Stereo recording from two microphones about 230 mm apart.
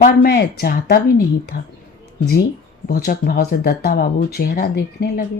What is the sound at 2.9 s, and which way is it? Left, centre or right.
A woman's voice, left.